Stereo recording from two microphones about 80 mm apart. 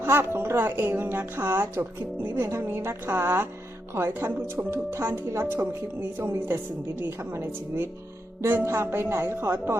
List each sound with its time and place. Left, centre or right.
0.0 s a woman's voice: right